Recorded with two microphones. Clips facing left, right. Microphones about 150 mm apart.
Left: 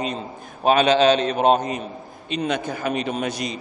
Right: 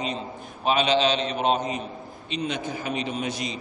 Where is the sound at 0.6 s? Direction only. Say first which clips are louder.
Left 6 dB; 50° left (ahead or behind).